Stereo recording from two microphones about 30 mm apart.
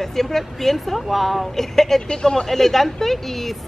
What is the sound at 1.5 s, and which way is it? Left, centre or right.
Speech, centre.